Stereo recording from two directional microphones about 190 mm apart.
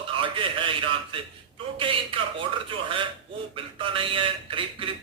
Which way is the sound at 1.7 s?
30° right (ahead or behind).